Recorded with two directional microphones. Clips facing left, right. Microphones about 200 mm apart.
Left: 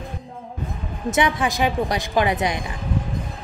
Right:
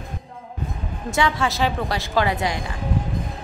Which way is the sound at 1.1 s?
20° left (ahead or behind).